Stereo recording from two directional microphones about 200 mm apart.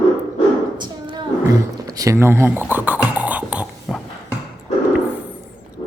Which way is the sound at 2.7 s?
10° right (ahead or behind).